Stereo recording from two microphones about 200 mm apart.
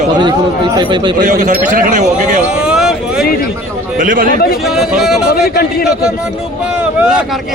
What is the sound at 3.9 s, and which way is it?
Speech, 45° right (ahead or behind).